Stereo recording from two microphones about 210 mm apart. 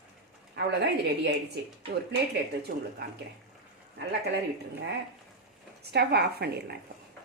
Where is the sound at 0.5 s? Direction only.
55° right (ahead or behind).